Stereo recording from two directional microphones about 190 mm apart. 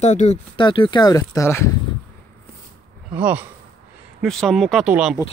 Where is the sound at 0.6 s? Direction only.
25° left (ahead or behind).